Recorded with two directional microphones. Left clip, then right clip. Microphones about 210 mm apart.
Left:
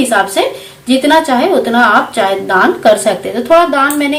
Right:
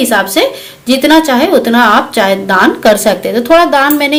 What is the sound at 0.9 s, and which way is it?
A woman's voice, 45° right (ahead or behind).